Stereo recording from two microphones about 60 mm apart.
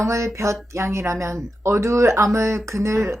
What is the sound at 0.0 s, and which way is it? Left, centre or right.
A woman's voice, right.